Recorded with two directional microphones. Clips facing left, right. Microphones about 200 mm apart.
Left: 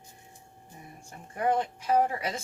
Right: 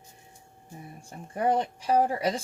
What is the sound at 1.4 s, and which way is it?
A woman's voice, 30° right (ahead or behind).